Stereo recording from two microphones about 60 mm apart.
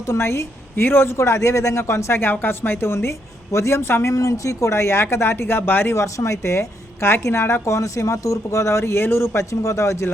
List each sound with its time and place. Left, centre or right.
0.1 s a woman's voice: left
4.1 s speech: left
6.0 s a woman's voice: left